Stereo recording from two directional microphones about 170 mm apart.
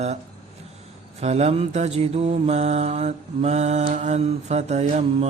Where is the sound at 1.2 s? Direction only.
40° right (ahead or behind).